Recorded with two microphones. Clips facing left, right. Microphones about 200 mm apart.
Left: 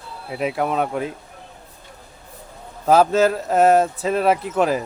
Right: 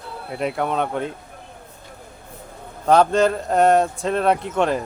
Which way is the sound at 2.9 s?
5° left (ahead or behind).